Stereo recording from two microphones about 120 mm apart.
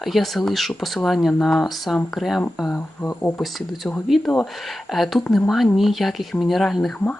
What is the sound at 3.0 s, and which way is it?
Speech, 15° left (ahead or behind).